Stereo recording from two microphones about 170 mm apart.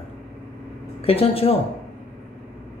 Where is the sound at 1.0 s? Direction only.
35° left (ahead or behind).